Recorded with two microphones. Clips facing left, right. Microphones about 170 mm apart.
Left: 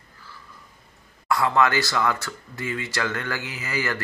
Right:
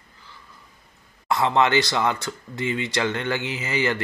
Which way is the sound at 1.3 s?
20° right (ahead or behind).